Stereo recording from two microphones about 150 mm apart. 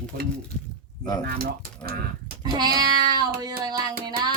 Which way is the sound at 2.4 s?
25° right (ahead or behind).